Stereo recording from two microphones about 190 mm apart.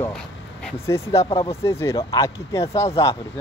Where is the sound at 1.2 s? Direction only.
30° left (ahead or behind).